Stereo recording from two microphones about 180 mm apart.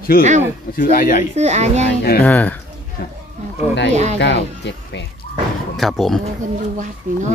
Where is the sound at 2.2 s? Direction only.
10° left (ahead or behind).